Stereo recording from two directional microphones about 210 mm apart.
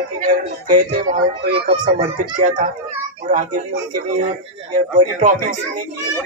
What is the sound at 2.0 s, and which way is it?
Speech, 40° right (ahead or behind).